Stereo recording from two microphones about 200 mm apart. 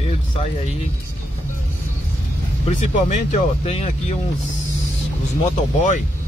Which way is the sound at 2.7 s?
40° left (ahead or behind).